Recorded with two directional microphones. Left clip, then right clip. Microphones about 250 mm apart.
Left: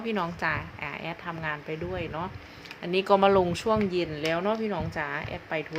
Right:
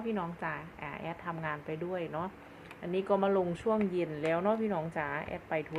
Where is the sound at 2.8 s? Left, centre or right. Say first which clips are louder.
Left 8 dB; centre.